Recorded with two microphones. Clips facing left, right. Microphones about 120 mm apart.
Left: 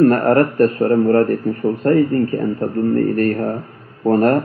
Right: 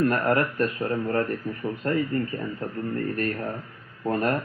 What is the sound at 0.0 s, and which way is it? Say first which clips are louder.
A man's voice: left 10 dB; 45° left (ahead or behind).